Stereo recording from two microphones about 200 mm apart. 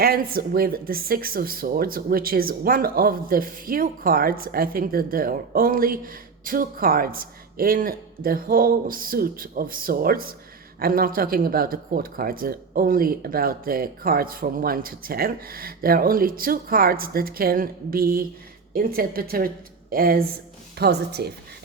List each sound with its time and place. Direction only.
0.0 s speech: 50° right (ahead or behind)